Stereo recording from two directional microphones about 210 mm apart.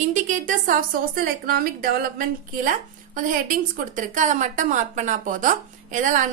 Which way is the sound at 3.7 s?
40° right (ahead or behind).